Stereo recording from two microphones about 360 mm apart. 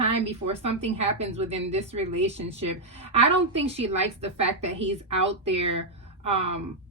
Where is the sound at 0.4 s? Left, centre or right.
Centre.